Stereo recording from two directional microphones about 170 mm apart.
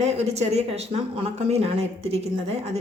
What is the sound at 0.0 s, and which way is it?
Speech, 40° right (ahead or behind).